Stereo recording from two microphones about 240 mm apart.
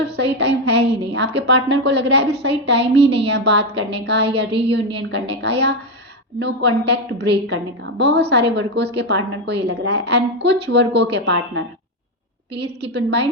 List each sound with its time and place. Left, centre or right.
0.3 s a woman's voice: right
12.9 s a woman's voice: right